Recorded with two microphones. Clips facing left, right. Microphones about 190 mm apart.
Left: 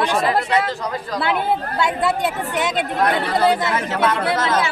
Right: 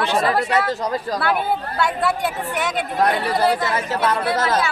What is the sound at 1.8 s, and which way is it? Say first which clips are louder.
Speech: even; 20° left (ahead or behind).